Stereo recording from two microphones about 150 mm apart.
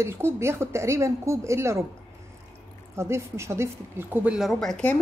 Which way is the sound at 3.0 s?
20° right (ahead or behind).